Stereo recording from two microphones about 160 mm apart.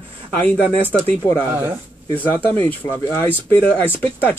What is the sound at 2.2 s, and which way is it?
Speech, 10° left (ahead or behind).